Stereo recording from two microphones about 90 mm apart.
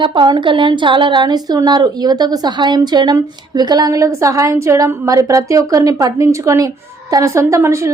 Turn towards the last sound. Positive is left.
turn(degrees=-35)  # may be behind; listen again after turning